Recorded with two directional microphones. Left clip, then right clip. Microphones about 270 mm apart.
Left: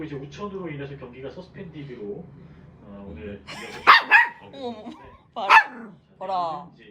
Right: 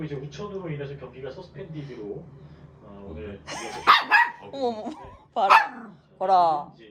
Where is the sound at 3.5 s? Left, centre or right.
Centre.